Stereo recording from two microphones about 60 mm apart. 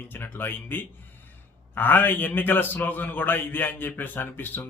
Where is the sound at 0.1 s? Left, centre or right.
Left.